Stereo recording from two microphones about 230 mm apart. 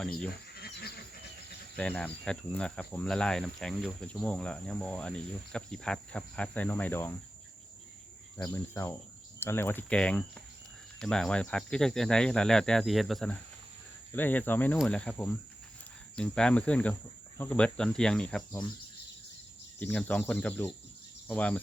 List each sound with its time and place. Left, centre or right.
0.5 s a sound: left
1.7 s speech: centre
8.4 s speech: centre
19.8 s speech: centre